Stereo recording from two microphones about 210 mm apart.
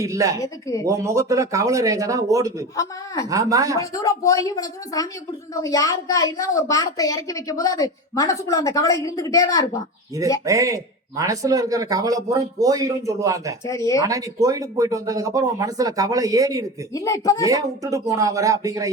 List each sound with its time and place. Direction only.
0.0 s speech: 15° right (ahead or behind)
0.3 s a woman's voice: 15° left (ahead or behind)
0.9 s speech: 15° right (ahead or behind)
3.8 s a woman's voice: 15° left (ahead or behind)
10.4 s speech: 15° right (ahead or behind)
13.7 s a woman's voice: 15° left (ahead or behind)
14.0 s speech: 15° right (ahead or behind)
16.9 s a woman's voice: 15° left (ahead or behind)
17.4 s speech: 15° right (ahead or behind)